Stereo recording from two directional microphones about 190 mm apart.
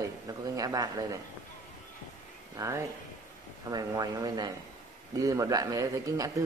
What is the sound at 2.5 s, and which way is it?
Speech, 15° right (ahead or behind).